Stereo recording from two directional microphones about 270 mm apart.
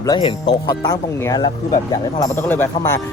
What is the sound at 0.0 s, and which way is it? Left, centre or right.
Speech, centre.